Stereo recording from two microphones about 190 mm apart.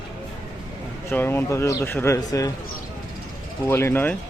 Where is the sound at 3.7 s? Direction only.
10° left (ahead or behind).